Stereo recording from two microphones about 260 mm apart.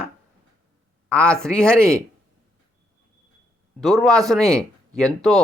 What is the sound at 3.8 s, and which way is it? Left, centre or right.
Speech, centre.